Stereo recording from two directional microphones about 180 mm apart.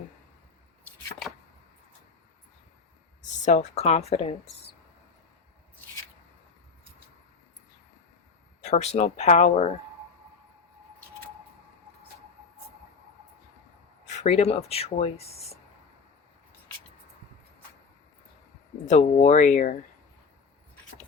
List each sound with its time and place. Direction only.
3.2 s speech: 40° left (ahead or behind)
8.6 s speech: 40° left (ahead or behind)
14.0 s speech: 40° left (ahead or behind)
18.9 s speech: 40° left (ahead or behind)